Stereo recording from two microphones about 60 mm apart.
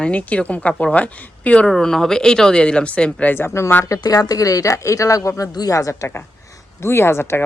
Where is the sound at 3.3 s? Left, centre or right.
Left.